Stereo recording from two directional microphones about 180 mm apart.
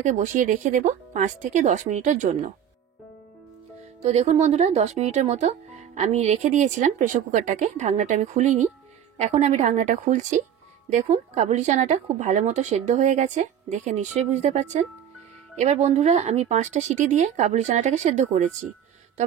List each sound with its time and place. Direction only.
0.0 s speech: 45° right (ahead or behind)
4.0 s speech: 40° right (ahead or behind)